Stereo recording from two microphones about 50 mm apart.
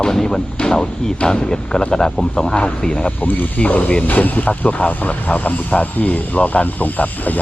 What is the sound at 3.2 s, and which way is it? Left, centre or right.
Speech, left.